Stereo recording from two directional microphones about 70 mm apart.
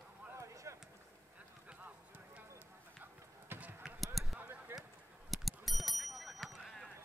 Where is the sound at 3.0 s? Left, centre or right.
Right.